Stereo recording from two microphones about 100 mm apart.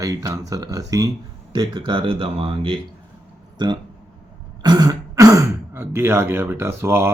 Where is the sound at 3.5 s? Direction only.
45° right (ahead or behind).